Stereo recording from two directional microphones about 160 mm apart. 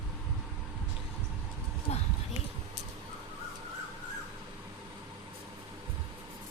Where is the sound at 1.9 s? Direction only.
45° left (ahead or behind).